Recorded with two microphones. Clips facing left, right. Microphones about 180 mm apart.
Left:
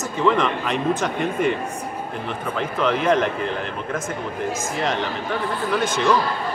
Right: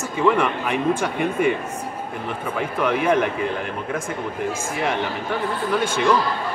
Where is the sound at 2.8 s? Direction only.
10° right (ahead or behind).